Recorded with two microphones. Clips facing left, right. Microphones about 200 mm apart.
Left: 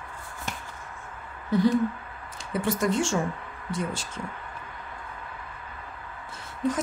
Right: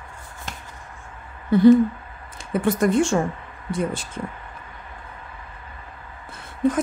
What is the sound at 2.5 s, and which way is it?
Speech, 55° right (ahead or behind).